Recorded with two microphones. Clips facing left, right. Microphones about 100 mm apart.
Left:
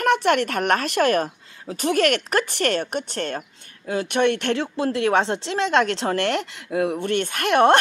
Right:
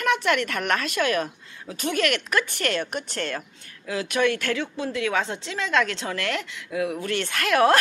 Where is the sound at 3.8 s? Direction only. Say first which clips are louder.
Left 3 dB; 40° left (ahead or behind).